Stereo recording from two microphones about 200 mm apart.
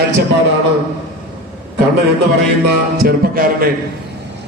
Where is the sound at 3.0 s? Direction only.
45° right (ahead or behind).